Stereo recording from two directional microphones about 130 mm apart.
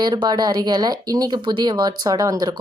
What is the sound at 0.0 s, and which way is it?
A woman's voice, 35° right (ahead or behind).